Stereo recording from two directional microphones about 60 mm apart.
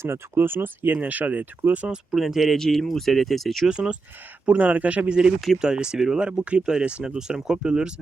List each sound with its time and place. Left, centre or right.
0.0 s speech: right
1.0 s speech: right
1.9 s speech: centre
3.7 s speech: centre